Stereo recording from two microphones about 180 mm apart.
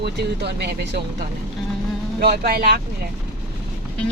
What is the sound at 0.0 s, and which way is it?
Speech, 65° right (ahead or behind).